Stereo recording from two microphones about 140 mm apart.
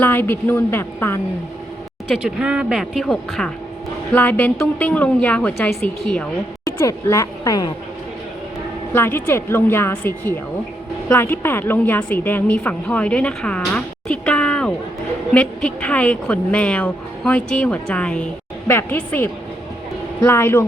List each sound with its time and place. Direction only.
0.0 s a woman's voice: 15° left (ahead or behind)
2.2 s speech: 5° right (ahead or behind)
4.1 s a woman's voice: 15° left (ahead or behind)
8.9 s a woman's voice: 15° left (ahead or behind)